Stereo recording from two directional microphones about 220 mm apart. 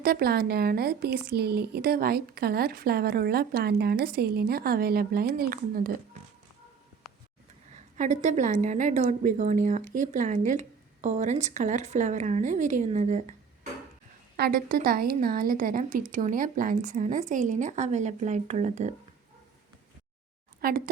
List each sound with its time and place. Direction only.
0.0 s speech: 45° right (ahead or behind)
7.1 s a sound: centre (ahead or behind)
7.9 s a woman's voice: 35° right (ahead or behind)
14.3 s a woman's voice: 45° right (ahead or behind)
20.6 s speech: 40° right (ahead or behind)